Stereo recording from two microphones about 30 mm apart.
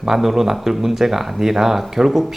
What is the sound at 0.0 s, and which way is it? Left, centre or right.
Speech, centre.